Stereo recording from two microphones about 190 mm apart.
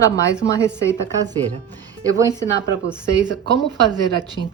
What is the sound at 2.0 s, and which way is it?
Speech, 20° right (ahead or behind).